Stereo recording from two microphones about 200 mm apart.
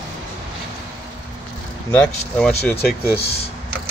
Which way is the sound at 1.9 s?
5° left (ahead or behind).